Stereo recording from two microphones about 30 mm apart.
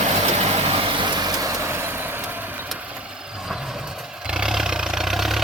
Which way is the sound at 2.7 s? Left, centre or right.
Right.